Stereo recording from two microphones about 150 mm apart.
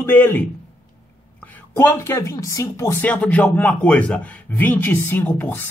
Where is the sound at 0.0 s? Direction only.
10° left (ahead or behind).